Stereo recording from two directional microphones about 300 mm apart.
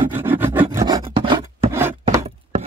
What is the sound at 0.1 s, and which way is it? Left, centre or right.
Rub, centre.